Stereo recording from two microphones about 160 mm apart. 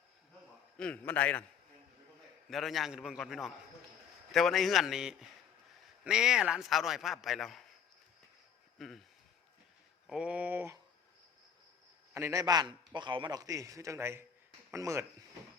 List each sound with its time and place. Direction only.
0.8 s a man's voice: 10° left (ahead or behind)
2.5 s a man's voice: centre (ahead or behind)
8.8 s a man's voice: centre (ahead or behind)
10.1 s speech: 5° right (ahead or behind)
12.1 s a man's voice: 20° right (ahead or behind)